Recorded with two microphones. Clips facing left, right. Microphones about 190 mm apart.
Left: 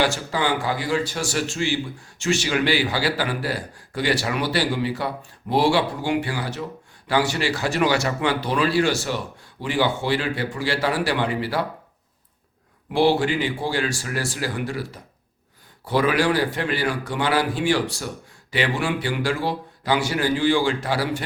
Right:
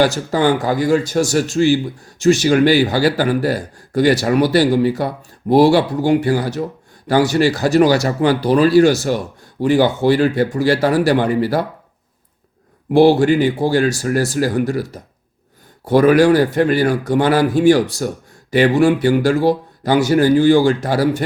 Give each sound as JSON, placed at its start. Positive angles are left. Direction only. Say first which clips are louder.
{"t": 0.0, "sound": "a man's voice", "louder": "right 8 dB", "side_deg": -45}
{"t": 12.9, "sound": "a man's voice", "louder": "right 8 dB", "side_deg": -45}